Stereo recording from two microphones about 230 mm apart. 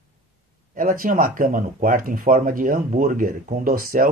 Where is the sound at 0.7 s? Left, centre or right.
Right.